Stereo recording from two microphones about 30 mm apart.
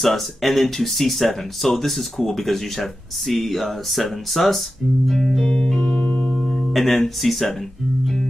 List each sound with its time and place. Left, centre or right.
0.0 s speech: centre
5.4 s music: left
5.9 s music: left
6.7 s speech: centre